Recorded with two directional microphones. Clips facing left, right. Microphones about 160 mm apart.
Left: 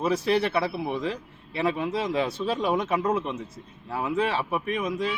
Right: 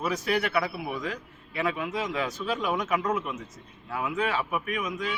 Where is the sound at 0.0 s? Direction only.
30° left (ahead or behind).